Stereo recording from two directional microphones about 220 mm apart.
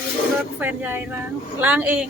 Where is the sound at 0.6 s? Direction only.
10° right (ahead or behind).